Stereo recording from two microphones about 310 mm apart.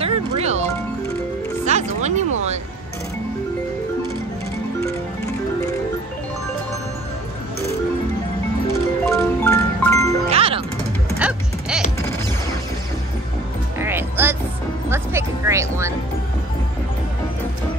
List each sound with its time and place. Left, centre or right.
0.0 s music: centre
1.7 s music: right
8.7 s music: centre
10.3 s music: centre
11.1 s music: centre
13.7 s music: centre